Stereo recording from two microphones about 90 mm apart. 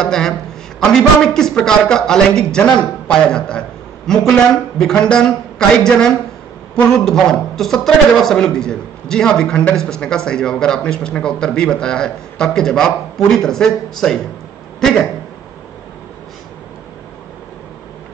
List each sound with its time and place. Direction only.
0.0 s a man's voice: 5° left (ahead or behind)